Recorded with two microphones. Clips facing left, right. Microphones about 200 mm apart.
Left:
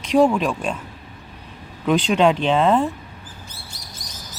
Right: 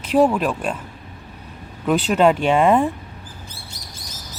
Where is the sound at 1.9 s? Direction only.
5° right (ahead or behind).